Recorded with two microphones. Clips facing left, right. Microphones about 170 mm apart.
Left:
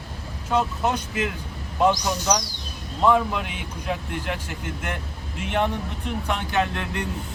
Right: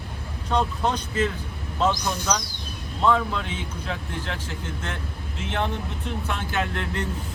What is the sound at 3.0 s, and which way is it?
Speech, 15° left (ahead or behind).